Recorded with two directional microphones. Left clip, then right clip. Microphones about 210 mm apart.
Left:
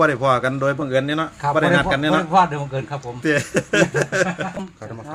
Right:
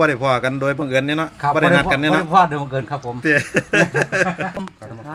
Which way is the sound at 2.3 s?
50° right (ahead or behind).